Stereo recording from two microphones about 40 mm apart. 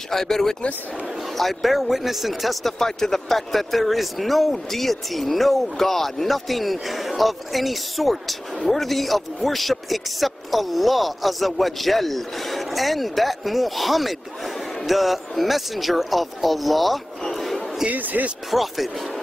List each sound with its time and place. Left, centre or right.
0.1 s speech: centre
2.8 s speech: centre
17.8 s speech: right
18.5 s speech: centre